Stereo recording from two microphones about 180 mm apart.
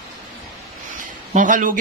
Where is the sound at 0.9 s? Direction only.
45° right (ahead or behind).